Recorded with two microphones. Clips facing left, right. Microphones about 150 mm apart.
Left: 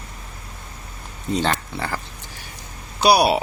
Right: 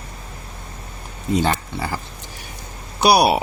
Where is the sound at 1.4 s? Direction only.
10° right (ahead or behind).